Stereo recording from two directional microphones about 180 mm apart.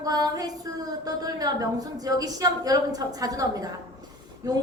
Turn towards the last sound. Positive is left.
turn(degrees=-20)  # may be behind; listen again after turning